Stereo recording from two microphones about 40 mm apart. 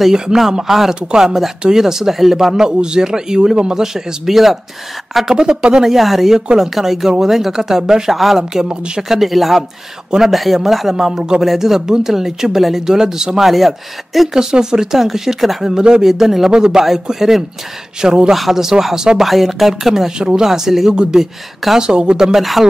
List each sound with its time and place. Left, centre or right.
0.0 s speech: centre
3.7 s speech: centre
5.3 s speech: right
5.9 s speech: centre
11.4 s speech: centre
13.4 s speech: centre
14.3 s speech: centre
16.8 s speech: centre
18.3 s speech: centre
20.2 s speech: right
20.4 s speech: centre
20.9 s speech: right
22.2 s speech: centre